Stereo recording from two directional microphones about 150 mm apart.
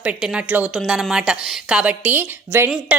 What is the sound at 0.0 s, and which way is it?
A woman's voice, 5° right (ahead or behind).